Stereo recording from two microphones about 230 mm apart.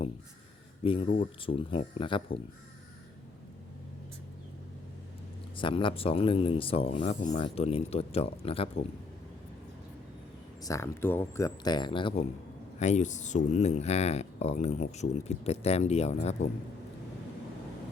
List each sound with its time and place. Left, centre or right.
0.9 s speech: left
5.5 s speech: left
10.6 s speech: centre; by 16.5 s left